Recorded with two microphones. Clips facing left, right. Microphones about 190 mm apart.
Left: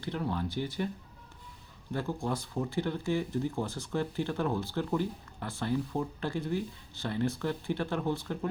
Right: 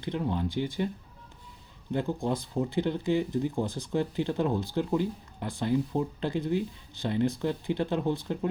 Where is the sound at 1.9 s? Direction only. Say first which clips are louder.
Right 4 dB; 20° right (ahead or behind).